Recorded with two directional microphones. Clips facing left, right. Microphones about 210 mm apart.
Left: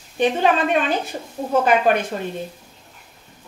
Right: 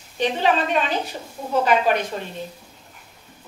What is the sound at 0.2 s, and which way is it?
A woman's voice, 50° left (ahead or behind).